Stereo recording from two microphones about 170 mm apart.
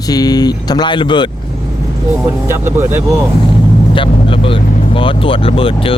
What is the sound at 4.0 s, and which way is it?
Speech, 30° left (ahead or behind).